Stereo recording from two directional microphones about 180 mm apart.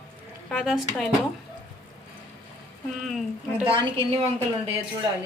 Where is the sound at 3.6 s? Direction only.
30° right (ahead or behind).